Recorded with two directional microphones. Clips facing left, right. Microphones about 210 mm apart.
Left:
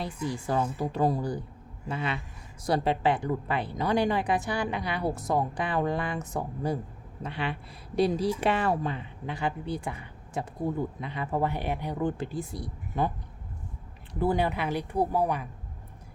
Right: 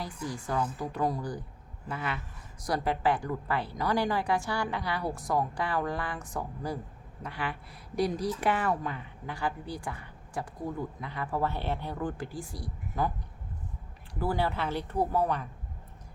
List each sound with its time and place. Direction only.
0.4 s a woman's voice: 25° left (ahead or behind)
14.1 s speech: 20° left (ahead or behind)